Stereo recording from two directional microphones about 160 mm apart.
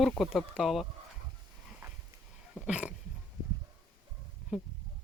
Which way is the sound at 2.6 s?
5° right (ahead or behind).